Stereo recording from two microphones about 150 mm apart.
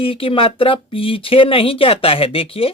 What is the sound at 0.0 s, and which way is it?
Speech, 35° left (ahead or behind).